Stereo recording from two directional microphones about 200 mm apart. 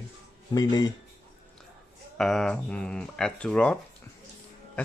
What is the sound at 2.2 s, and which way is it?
Speech, centre (ahead or behind).